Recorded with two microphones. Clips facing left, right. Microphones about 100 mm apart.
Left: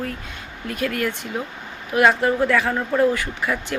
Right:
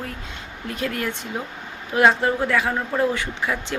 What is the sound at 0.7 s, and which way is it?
A woman's voice, 25° right (ahead or behind).